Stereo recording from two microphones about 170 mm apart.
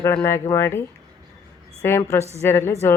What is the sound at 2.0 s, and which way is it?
Speech, 20° left (ahead or behind).